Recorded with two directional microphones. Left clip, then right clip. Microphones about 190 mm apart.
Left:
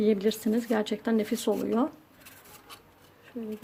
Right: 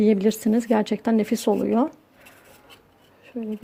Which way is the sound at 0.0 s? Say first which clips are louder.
Right 5 dB; 35° right (ahead or behind).